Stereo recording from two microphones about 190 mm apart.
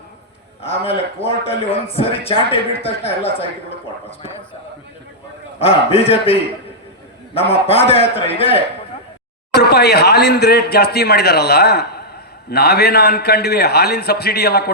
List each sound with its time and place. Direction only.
0.6 s a man's voice: 30° left (ahead or behind)
5.5 s a man's voice: 30° left (ahead or behind)
9.6 s speech: 60° left (ahead or behind)